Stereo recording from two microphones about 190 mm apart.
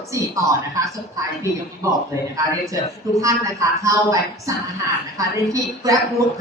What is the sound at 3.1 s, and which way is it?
Speech, 15° right (ahead or behind).